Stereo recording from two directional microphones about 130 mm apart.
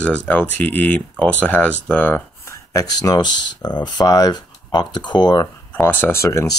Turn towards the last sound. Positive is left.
turn(degrees=25)  # may be behind; listen again after turning